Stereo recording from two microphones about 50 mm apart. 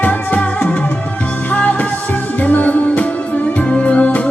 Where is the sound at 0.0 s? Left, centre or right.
Left.